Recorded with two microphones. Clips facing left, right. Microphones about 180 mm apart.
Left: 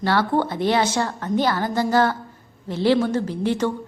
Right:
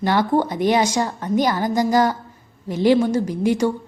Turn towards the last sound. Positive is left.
turn(degrees=-10)  # may be behind; listen again after turning